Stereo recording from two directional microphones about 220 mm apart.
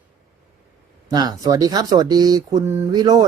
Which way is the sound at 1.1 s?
20° right (ahead or behind).